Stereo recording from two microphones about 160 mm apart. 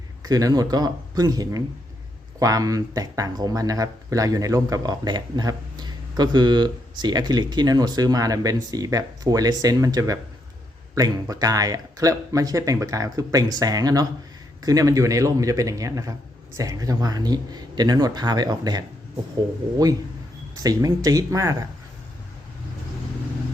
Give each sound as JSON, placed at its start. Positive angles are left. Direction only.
{"t": 0.2, "sound": "speech", "side_deg": -20}
{"t": 20.6, "sound": "speech", "side_deg": -20}